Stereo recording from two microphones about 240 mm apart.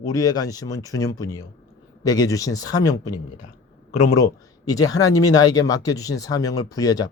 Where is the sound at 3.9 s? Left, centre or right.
Left.